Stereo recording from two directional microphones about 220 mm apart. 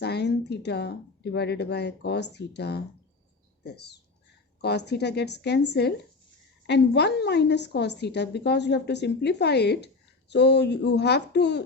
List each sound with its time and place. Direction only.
0.0 s a woman's voice: 50° left (ahead or behind)